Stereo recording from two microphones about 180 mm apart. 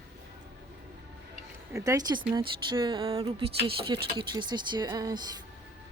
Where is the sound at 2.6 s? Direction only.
25° right (ahead or behind).